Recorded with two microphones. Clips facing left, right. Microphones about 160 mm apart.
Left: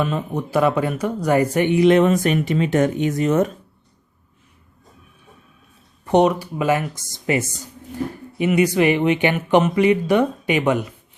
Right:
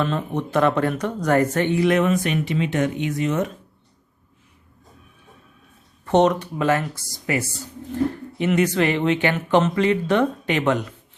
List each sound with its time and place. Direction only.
0.0 s speech: 10° left (ahead or behind); by 2.1 s 30° left (ahead or behind)
2.1 s speech: 45° left (ahead or behind)
6.1 s speech: 10° left (ahead or behind)
8.4 s speech: 10° left (ahead or behind)